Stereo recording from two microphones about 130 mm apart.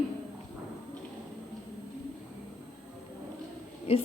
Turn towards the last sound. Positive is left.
turn(degrees=50)  # may be behind; listen again after turning